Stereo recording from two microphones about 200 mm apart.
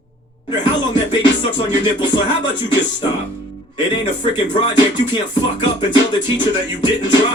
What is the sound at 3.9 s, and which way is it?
Music, 20° left (ahead or behind).